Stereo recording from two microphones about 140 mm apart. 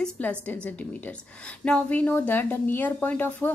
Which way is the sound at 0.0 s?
10° left (ahead or behind).